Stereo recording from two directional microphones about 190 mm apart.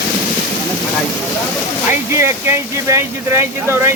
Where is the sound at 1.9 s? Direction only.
15° right (ahead or behind).